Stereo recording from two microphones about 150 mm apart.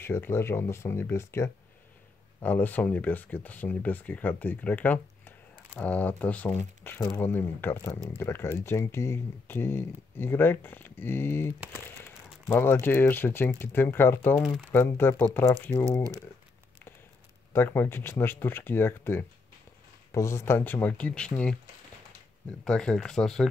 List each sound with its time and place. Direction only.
0.0 s speech: 15° left (ahead or behind)
17.5 s speech: 15° left (ahead or behind)
22.7 s speech: 5° left (ahead or behind)